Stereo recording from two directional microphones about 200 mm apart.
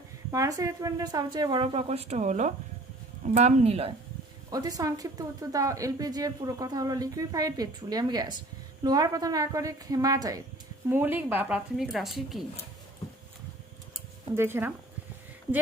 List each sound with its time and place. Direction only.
0.3 s a woman's voice: 15° right (ahead or behind)
4.5 s a woman's voice: 20° right (ahead or behind); by 12.4 s centre (ahead or behind)
14.3 s a woman's voice: 10° right (ahead or behind)